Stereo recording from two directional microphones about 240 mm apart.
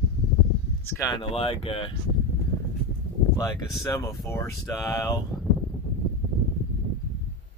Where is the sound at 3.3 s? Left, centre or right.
Centre.